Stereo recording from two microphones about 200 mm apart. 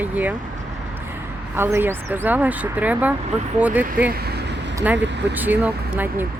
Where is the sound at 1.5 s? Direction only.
10° right (ahead or behind).